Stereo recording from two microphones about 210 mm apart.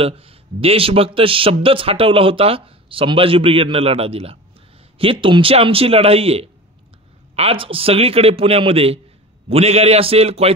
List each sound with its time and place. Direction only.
0.0 s a man's voice: 25° right (ahead or behind)